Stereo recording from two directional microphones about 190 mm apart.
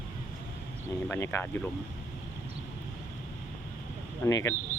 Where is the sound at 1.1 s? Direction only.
10° left (ahead or behind).